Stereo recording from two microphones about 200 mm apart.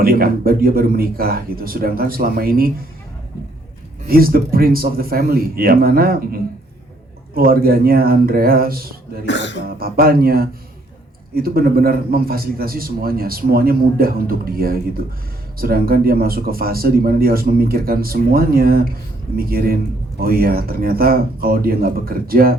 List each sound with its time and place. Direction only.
0.0 s a man's voice: 50° right (ahead or behind)
4.0 s a man's voice: 45° right (ahead or behind)
9.2 s speech: 60° left (ahead or behind)
9.6 s a man's voice: 50° right (ahead or behind)